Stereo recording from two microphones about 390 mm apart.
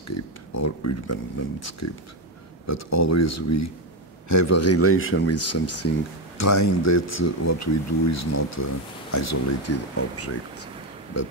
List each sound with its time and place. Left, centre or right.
0.1 s speech: left